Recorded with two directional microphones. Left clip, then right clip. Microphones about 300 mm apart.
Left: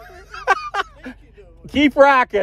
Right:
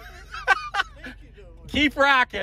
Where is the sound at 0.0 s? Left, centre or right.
Centre.